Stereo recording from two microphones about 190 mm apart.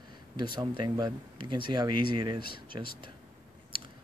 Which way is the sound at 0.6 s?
20° right (ahead or behind).